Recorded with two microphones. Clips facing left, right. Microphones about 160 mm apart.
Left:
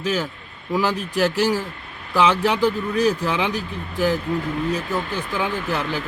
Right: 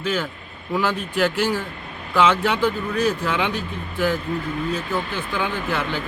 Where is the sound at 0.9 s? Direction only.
40° left (ahead or behind).